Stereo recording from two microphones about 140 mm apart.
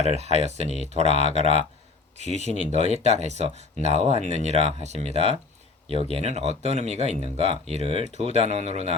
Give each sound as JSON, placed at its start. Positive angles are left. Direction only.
{"t": 0.0, "sound": "speech", "side_deg": -50}